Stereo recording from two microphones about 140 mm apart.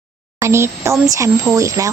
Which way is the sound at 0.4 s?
20° right (ahead or behind).